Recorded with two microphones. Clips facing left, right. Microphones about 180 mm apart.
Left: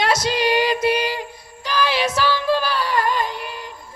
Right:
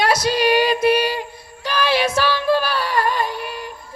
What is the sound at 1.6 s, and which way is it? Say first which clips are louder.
Music: right 2 dB; 15° left (ahead or behind).